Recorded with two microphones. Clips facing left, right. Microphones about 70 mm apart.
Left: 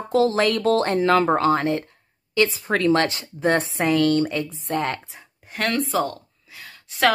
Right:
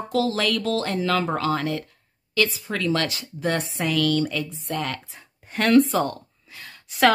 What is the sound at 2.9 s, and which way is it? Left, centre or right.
A woman's voice, left.